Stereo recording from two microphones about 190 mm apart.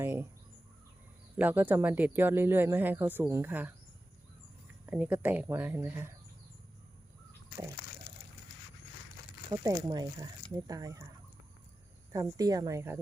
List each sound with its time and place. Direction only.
0.0 s bird: 10° right (ahead or behind)
1.4 s speech: 10° right (ahead or behind)
4.9 s speech: 10° right (ahead or behind)
9.5 s speech: 20° right (ahead or behind)
12.1 s speech: 20° right (ahead or behind)